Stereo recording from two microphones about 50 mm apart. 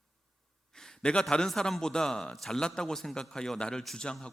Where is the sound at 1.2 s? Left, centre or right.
Centre.